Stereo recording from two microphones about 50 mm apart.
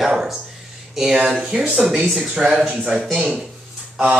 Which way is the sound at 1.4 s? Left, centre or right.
Centre.